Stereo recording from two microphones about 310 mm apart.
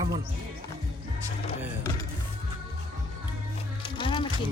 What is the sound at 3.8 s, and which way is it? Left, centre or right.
Music, centre.